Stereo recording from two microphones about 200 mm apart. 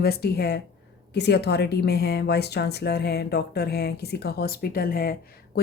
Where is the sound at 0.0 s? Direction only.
50° left (ahead or behind).